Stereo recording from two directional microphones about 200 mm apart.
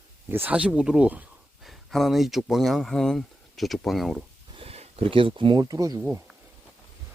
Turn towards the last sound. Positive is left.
turn(degrees=-20)  # may be behind; listen again after turning